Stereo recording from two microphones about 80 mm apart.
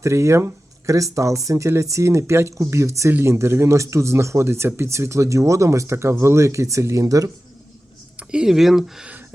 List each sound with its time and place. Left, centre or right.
0.0 s speech: right
8.1 s speech: centre